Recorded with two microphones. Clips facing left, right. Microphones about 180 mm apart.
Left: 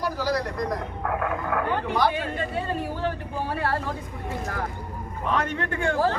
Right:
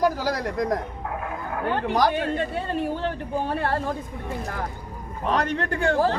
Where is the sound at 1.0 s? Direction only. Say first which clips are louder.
Left 4 dB; 70° left (ahead or behind).